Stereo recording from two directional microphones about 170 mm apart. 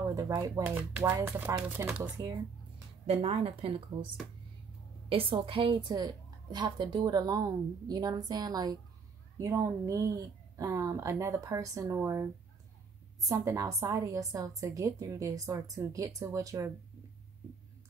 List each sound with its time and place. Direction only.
0.0 s speech: 20° right (ahead or behind)
0.7 s speech: 10° right (ahead or behind)
3.1 s a woman's voice: 35° right (ahead or behind)
5.1 s a woman's voice: 30° right (ahead or behind)